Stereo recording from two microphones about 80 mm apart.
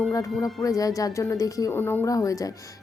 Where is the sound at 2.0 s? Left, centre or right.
Left.